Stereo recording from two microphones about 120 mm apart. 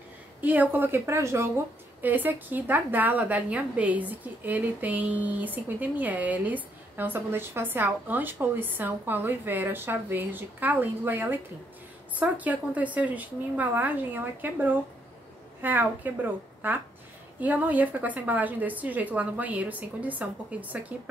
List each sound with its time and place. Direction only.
0.4 s a woman's voice: 15° right (ahead or behind)